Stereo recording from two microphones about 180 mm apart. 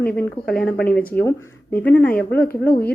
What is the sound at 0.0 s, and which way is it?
A woman's voice, 10° left (ahead or behind).